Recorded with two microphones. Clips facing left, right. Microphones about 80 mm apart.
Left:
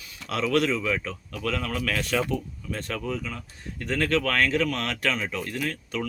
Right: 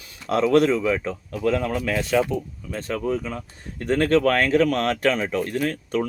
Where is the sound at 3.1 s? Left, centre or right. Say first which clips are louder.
Right 6 dB; right.